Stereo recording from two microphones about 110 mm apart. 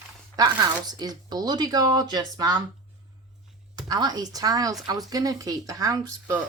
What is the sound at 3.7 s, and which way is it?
Speech, 40° right (ahead or behind).